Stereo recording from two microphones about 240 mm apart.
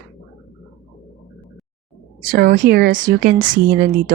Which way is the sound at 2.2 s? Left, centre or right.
Right.